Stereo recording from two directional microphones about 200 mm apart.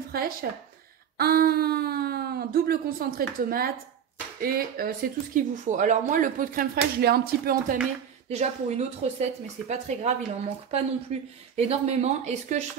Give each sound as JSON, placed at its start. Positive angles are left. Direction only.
{"t": 0.1, "sound": "speech", "side_deg": -50}
{"t": 8.3, "sound": "speech", "side_deg": -35}